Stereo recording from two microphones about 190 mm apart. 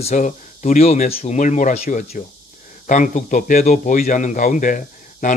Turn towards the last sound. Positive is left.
turn(degrees=45)  # may be behind; listen again after turning